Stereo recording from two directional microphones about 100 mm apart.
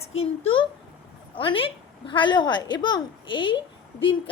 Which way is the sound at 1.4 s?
65° left (ahead or behind).